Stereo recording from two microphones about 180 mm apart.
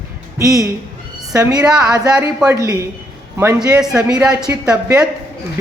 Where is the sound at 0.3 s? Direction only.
15° right (ahead or behind).